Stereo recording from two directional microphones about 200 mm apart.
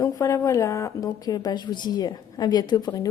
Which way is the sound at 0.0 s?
15° left (ahead or behind).